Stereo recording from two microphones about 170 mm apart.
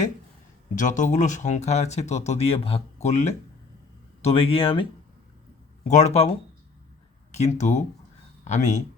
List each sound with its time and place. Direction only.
0.8 s speech: 45° left (ahead or behind)
5.9 s speech: 40° left (ahead or behind)